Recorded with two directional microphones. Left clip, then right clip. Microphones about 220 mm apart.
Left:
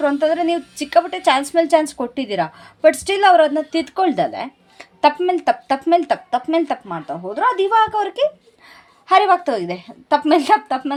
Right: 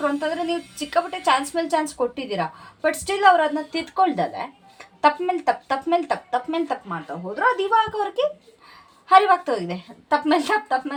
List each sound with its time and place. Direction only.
0.0 s a woman's voice: 50° left (ahead or behind)